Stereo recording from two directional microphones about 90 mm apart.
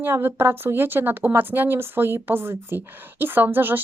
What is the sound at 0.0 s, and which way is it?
Speech, 25° right (ahead or behind).